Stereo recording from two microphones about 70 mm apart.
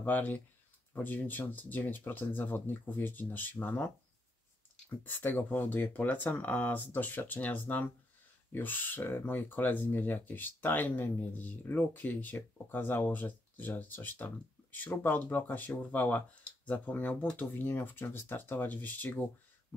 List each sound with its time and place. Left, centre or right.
0.0 s speech: left
5.0 s speech: left